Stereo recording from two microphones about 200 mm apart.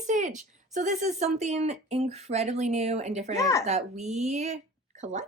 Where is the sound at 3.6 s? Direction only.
35° right (ahead or behind).